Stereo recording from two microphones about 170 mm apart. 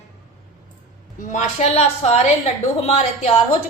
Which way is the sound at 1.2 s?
45° left (ahead or behind).